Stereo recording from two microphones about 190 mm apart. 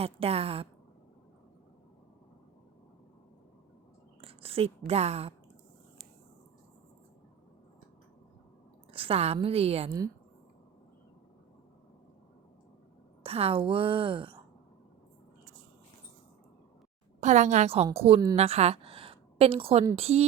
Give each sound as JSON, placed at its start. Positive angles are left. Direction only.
{"t": 0.0, "sound": "a woman's voice", "side_deg": -30}
{"t": 4.2, "sound": "a sound", "side_deg": -30}
{"t": 4.9, "sound": "a woman's voice", "side_deg": -35}
{"t": 8.9, "sound": "a woman's voice", "side_deg": -30}
{"t": 13.2, "sound": "a woman's voice", "side_deg": -30}
{"t": 17.2, "sound": "a woman's voice", "side_deg": -40}